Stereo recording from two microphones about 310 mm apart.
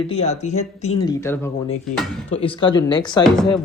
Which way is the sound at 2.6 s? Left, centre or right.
Centre.